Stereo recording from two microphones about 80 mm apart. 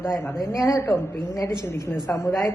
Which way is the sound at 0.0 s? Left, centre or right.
Left.